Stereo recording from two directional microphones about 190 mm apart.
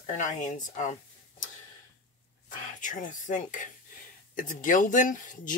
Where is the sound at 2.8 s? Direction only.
45° left (ahead or behind).